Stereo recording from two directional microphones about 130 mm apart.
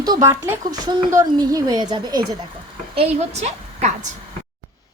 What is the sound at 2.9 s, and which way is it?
A woman's voice, 50° right (ahead or behind).